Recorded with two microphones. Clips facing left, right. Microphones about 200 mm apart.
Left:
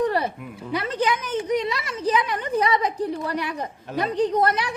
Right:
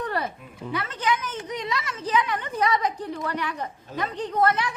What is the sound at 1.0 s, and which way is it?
Speech, 10° left (ahead or behind).